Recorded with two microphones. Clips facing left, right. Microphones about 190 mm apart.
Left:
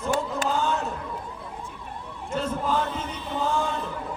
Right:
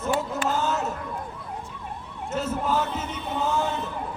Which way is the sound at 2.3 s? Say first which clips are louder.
Even; 5° right (ahead or behind).